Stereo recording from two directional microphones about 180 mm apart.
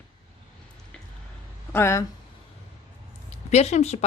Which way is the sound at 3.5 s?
40° left (ahead or behind).